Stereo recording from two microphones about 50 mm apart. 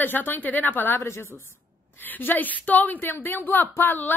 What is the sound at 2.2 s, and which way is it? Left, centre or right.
A woman's voice, left.